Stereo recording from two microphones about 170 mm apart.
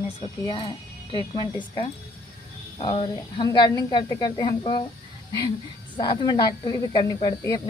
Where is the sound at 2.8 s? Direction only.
30° left (ahead or behind).